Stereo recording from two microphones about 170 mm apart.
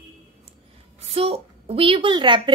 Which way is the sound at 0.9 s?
35° right (ahead or behind).